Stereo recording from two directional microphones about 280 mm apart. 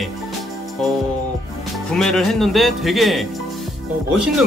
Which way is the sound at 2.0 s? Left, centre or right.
Centre.